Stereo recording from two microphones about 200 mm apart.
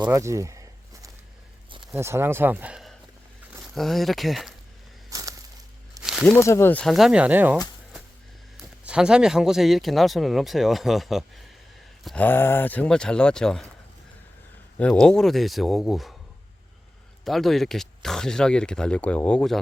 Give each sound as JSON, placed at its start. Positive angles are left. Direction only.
{"t": 0.0, "sound": "a sound", "side_deg": -15}
{"t": 1.7, "sound": "speech", "side_deg": -15}
{"t": 5.0, "sound": "a sound", "side_deg": -15}
{"t": 6.0, "sound": "snake", "side_deg": 0}
{"t": 6.3, "sound": "speech", "side_deg": 15}
{"t": 14.8, "sound": "speech", "side_deg": 5}
{"t": 17.2, "sound": "speech", "side_deg": 0}